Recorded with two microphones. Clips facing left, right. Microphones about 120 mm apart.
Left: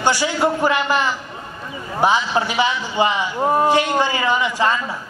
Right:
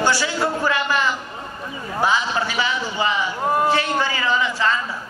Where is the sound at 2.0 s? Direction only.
20° left (ahead or behind).